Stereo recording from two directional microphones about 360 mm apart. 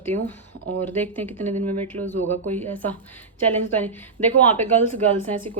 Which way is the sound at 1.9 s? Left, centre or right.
Right.